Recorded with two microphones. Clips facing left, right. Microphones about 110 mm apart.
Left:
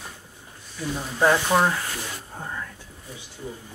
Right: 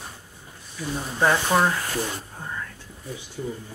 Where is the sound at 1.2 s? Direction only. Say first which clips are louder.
Left 1 dB; 5° left (ahead or behind).